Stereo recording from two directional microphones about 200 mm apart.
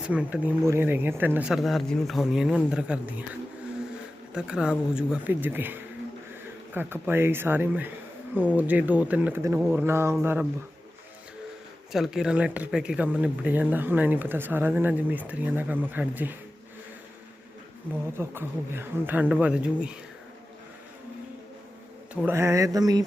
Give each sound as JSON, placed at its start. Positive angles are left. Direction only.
{"t": 0.1, "sound": "speech", "side_deg": -5}
{"t": 4.4, "sound": "speech", "side_deg": -5}
{"t": 11.9, "sound": "speech", "side_deg": 0}
{"t": 18.2, "sound": "speech", "side_deg": -10}
{"t": 22.1, "sound": "speech", "side_deg": -10}